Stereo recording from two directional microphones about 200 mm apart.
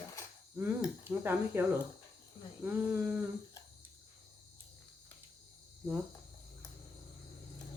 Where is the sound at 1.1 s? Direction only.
10° right (ahead or behind).